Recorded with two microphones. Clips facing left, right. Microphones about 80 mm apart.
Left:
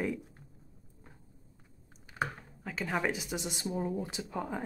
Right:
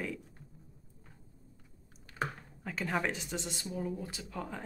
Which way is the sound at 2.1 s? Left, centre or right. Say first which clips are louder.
Left 2 dB; centre.